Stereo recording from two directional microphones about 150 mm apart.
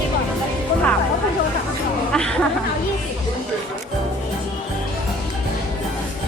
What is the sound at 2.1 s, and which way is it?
Speech, 5° left (ahead or behind).